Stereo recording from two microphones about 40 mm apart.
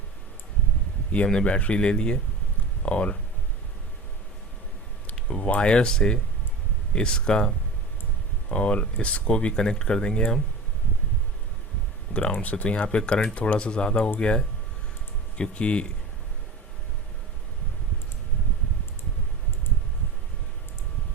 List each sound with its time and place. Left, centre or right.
1.1 s speech: left
5.3 s speech: left
12.1 s speech: left
12.7 s speech: left
13.3 s speech: left